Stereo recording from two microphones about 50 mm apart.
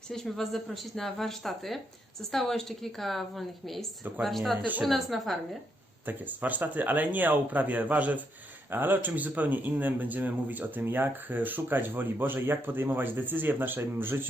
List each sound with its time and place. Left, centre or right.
0.1 s speech: centre
6.1 s speech: right
8.7 s speech: right